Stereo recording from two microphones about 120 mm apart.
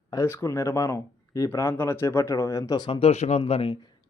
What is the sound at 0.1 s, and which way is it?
Speech, 25° left (ahead or behind).